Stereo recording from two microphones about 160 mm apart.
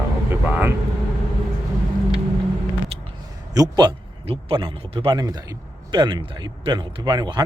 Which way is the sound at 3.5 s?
25° right (ahead or behind).